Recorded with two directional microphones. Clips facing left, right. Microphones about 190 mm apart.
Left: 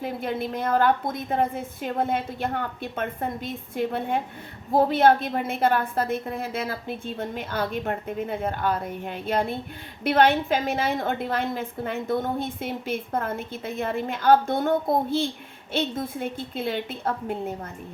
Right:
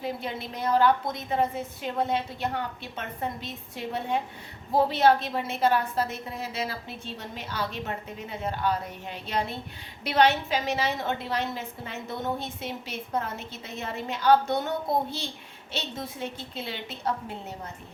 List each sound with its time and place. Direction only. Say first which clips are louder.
0.0 s a woman's voice: left 5 dB; 50° left (ahead or behind)